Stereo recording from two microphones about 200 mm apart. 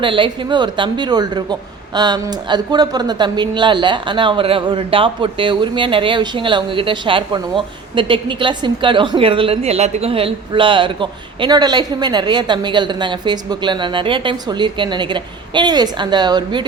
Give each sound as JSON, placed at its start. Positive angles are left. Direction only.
{"t": 0.0, "sound": "speech", "side_deg": -25}